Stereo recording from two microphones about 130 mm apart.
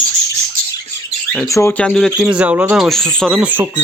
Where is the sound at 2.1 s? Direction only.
10° right (ahead or behind).